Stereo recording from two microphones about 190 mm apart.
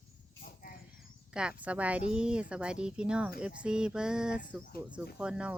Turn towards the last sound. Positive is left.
turn(degrees=-5)  # may be behind; listen again after turning